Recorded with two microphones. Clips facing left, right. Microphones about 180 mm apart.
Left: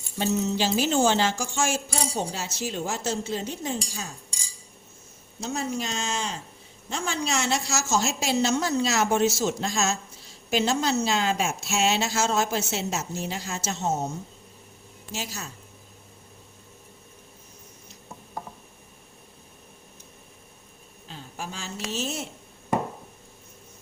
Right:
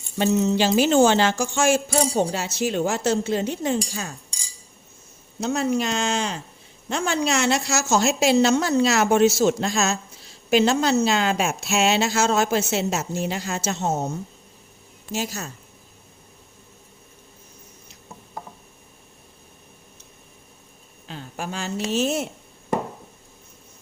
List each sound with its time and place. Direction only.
0.2 s speech: 65° right (ahead or behind)
5.4 s speech: 65° right (ahead or behind)
15.1 s speech: 50° right (ahead or behind)
21.1 s a woman's voice: 65° right (ahead or behind)